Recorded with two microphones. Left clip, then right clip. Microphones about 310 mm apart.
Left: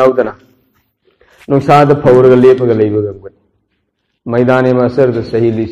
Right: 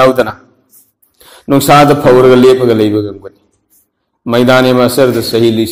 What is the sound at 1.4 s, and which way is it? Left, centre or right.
A man's voice, right.